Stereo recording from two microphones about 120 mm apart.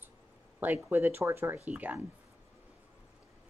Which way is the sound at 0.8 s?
20° right (ahead or behind).